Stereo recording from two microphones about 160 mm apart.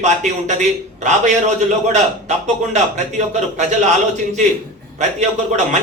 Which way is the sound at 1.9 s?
45° right (ahead or behind).